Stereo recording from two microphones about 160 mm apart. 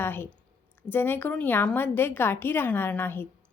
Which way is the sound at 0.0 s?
15° left (ahead or behind).